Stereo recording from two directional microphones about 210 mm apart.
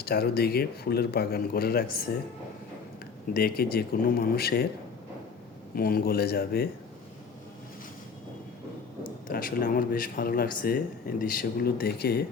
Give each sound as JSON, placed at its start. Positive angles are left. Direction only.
{"t": 0.0, "sound": "speech", "side_deg": 45}
{"t": 3.3, "sound": "speech", "side_deg": 45}
{"t": 5.7, "sound": "speech", "side_deg": 45}
{"t": 9.2, "sound": "speech", "side_deg": 45}